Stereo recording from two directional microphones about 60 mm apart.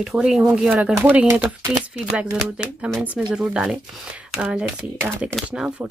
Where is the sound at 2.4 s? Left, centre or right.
Centre.